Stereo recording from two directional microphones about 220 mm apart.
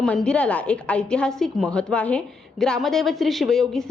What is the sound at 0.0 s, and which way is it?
A woman's voice, 5° left (ahead or behind).